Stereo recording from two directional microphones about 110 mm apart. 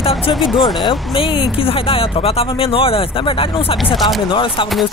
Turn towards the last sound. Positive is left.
turn(degrees=50)  # may be behind; listen again after turning